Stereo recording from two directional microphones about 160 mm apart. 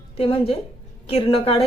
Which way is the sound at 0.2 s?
35° left (ahead or behind).